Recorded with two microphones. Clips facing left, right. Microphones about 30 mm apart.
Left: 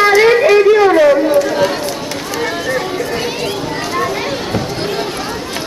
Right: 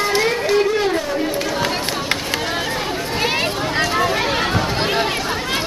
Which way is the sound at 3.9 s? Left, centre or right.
Centre.